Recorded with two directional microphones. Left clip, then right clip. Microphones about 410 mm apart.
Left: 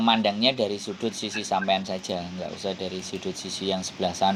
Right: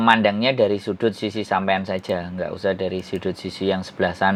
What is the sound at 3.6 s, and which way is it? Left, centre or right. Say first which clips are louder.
Speech: right 5 dB; right.